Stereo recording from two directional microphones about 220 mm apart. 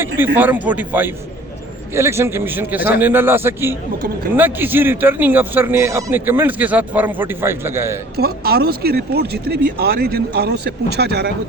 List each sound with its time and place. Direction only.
0.3 s speech: 10° right (ahead or behind)
8.1 s speech: 45° right (ahead or behind)